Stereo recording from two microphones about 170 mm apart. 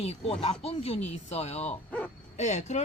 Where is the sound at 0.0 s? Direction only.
35° left (ahead or behind).